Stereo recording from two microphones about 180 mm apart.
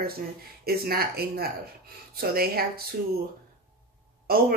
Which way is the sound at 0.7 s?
60° right (ahead or behind).